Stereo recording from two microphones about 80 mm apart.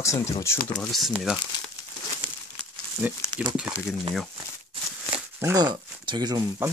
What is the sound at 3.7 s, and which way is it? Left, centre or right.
Speech, right.